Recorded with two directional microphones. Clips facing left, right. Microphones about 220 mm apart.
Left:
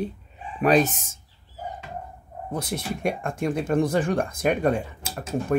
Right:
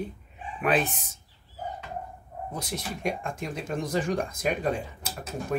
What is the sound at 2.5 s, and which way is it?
Speech, 55° left (ahead or behind).